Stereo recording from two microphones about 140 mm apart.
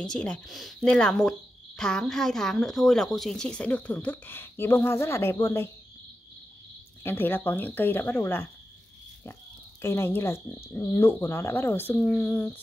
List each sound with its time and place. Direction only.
0.0 s a woman's voice: 5° left (ahead or behind)
7.0 s a woman's voice: 15° left (ahead or behind)
9.8 s a woman's voice: 15° left (ahead or behind)